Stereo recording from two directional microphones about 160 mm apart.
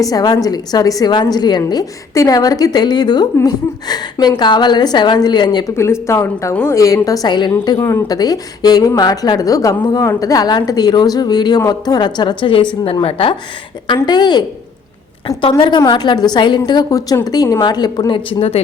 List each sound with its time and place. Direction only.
0.0 s a woman's voice: 25° left (ahead or behind)